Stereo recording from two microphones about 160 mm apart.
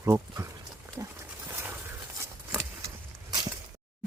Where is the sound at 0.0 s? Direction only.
20° right (ahead or behind).